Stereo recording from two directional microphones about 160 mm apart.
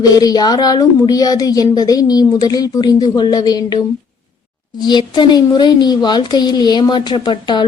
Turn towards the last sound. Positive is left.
turn(degrees=30)  # may be behind; listen again after turning